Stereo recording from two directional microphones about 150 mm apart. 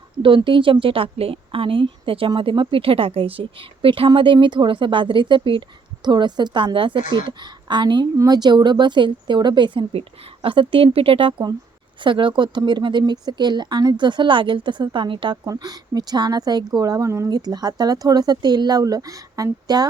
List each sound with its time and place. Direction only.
0.2 s a woman's voice: 35° right (ahead or behind)